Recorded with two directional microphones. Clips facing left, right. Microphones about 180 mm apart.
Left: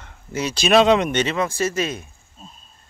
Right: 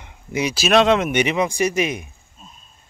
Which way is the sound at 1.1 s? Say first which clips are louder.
Right 2 dB; 15° right (ahead or behind).